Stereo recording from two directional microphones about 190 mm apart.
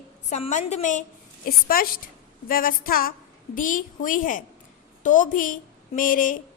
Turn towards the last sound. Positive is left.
turn(degrees=45)  # may be behind; listen again after turning